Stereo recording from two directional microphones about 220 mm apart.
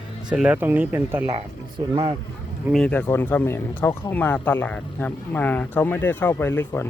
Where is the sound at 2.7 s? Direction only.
5° left (ahead or behind).